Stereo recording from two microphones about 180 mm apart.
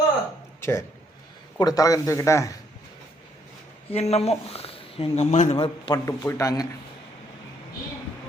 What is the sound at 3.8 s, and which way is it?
Speech, 35° left (ahead or behind).